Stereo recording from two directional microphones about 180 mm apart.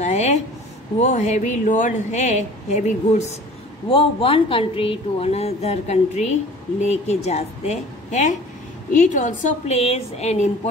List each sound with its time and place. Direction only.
0.0 s a woman's voice: 40° left (ahead or behind)